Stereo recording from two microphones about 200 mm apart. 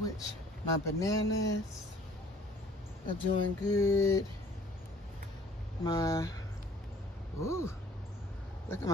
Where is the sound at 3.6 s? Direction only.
15° left (ahead or behind).